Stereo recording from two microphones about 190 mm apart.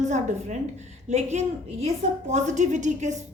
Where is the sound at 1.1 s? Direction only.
35° right (ahead or behind).